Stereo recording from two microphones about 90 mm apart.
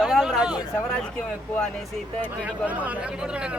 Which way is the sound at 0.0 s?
Centre (ahead or behind).